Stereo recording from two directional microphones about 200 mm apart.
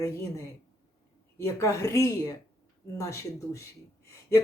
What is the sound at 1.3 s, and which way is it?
A woman's voice, 15° left (ahead or behind).